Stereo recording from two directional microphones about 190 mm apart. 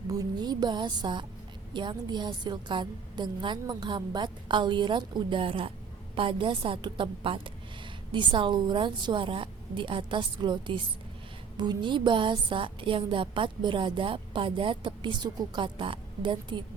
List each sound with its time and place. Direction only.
0.1 s a woman's voice: 20° right (ahead or behind)